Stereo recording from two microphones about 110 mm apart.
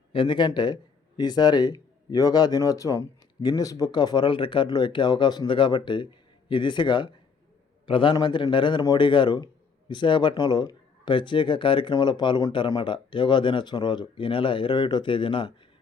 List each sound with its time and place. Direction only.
0.1 s a man's voice: 50° left (ahead or behind)